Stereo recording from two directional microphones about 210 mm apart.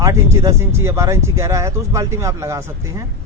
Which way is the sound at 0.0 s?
15° right (ahead or behind).